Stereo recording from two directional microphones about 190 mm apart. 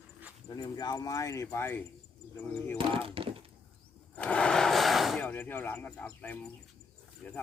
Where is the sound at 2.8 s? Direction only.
30° right (ahead or behind).